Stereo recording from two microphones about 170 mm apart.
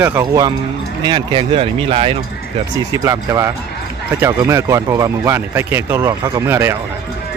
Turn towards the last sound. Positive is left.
turn(degrees=-15)  # may be behind; listen again after turning